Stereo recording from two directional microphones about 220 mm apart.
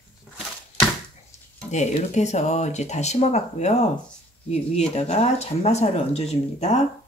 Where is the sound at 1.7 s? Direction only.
30° left (ahead or behind).